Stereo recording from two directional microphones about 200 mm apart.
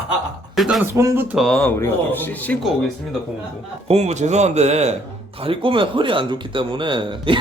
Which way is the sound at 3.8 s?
35° right (ahead or behind).